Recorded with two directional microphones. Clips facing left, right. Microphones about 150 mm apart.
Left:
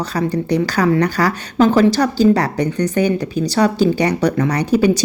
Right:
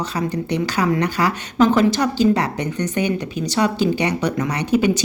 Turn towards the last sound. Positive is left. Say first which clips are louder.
# left 4 dB
turn(degrees=35)  # may be behind; listen again after turning